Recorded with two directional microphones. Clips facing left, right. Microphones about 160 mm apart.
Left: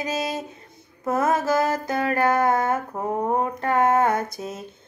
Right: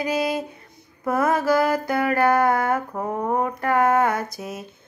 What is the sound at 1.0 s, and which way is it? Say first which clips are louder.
Female singing: right 1 dB; 25° left (ahead or behind).